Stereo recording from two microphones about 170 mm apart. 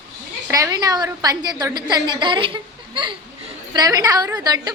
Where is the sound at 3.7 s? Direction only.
20° right (ahead or behind).